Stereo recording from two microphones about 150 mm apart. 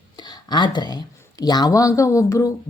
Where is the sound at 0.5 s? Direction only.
30° left (ahead or behind).